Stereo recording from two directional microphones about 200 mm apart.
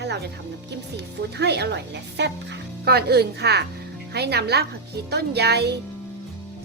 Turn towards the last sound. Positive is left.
turn(degrees=-55)  # may be behind; listen again after turning